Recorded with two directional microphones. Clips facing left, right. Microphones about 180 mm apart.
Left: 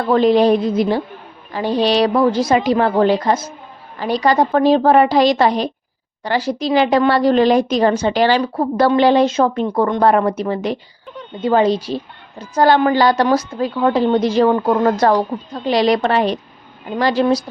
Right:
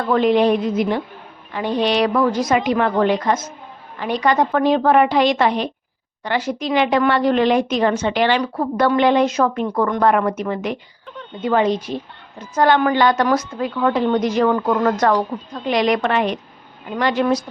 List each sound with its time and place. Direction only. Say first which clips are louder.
0.0 s a woman's voice: left 3 dB; 35° left (ahead or behind)